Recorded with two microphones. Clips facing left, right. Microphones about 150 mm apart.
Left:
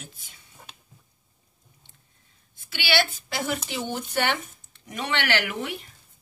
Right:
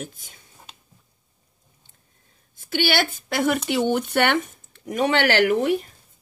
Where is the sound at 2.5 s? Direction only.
45° right (ahead or behind).